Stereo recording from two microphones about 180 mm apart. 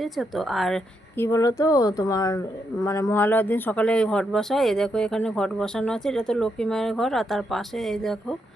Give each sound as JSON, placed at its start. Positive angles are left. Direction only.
{"t": 0.0, "sound": "speech", "side_deg": 0}
{"t": 1.1, "sound": "speech", "side_deg": 15}